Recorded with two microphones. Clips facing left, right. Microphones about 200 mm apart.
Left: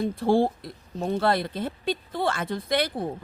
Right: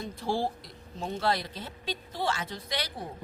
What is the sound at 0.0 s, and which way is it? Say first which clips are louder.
Speech: left 9 dB; 55° left (ahead or behind).